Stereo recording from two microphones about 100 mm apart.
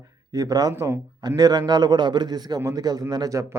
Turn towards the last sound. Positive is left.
turn(degrees=-35)  # may be behind; listen again after turning